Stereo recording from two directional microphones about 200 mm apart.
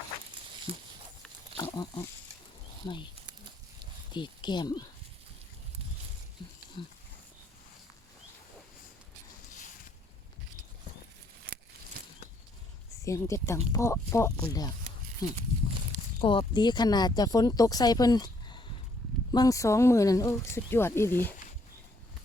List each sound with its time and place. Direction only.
1.5 s pig: 20° left (ahead or behind)
4.1 s speech: 20° left (ahead or behind)
6.4 s a sound: 25° left (ahead or behind)
6.8 s speech: 25° left (ahead or behind)
11.5 s a sound: 55° right (ahead or behind)
13.1 s speech: 15° left (ahead or behind)